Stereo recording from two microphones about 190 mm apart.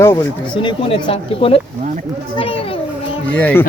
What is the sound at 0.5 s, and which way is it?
Speech, 25° left (ahead or behind).